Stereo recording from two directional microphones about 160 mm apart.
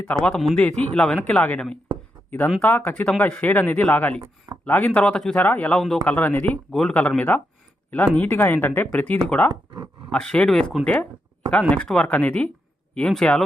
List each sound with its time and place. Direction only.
0.0 s speech: 5° left (ahead or behind)
9.5 s speech: 25° right (ahead or behind)
10.1 s speech: 5° left (ahead or behind)